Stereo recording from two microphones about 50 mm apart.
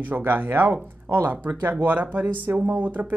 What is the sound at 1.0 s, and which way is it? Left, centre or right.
Speech, right.